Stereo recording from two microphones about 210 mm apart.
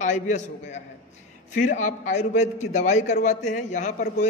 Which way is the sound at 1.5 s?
35° left (ahead or behind).